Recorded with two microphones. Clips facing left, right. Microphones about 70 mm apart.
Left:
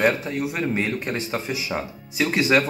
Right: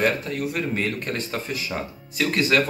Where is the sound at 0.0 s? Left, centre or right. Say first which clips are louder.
Left 2 dB; centre.